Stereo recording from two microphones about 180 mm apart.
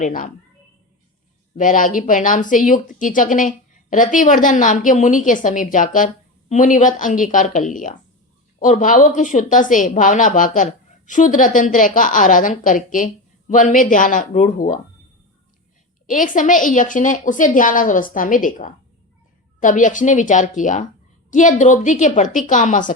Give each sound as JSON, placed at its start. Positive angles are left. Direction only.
{"t": 0.0, "sound": "speech", "side_deg": 50}
{"t": 1.5, "sound": "speech", "side_deg": 45}
{"t": 16.0, "sound": "speech", "side_deg": 45}